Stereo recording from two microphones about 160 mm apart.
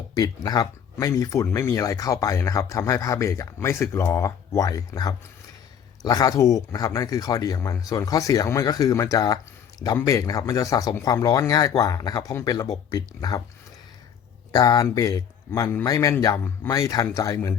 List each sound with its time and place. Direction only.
0.2 s speech: 25° left (ahead or behind)
14.5 s speech: 25° left (ahead or behind)